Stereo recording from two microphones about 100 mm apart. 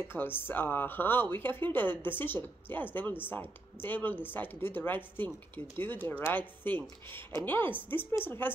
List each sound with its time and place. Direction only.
0.1 s speech: 20° left (ahead or behind)